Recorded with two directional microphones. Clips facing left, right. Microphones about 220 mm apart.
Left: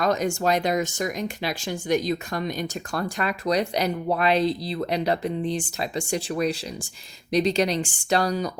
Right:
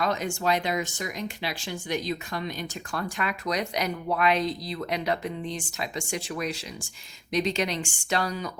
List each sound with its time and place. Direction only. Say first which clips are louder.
0.0 s speech: left 4 dB; 45° left (ahead or behind)